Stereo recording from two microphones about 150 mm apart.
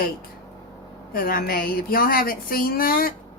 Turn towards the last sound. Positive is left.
turn(degrees=75)  # may be behind; listen again after turning